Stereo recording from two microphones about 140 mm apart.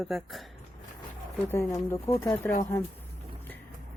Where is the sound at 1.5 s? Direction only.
20° left (ahead or behind).